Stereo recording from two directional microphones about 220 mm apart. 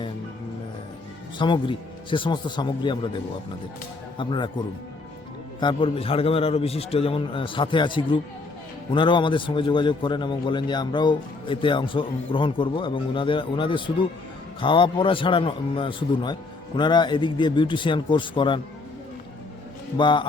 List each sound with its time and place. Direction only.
1.4 s a man's voice: 20° left (ahead or behind)
4.2 s a man's voice: 20° left (ahead or behind)
20.0 s a man's voice: 20° left (ahead or behind)